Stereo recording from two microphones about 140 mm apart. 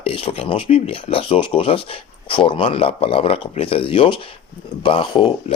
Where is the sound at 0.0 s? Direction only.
40° left (ahead or behind).